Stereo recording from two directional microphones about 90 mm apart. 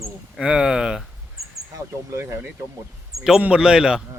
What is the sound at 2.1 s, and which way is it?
Speech, 30° right (ahead or behind).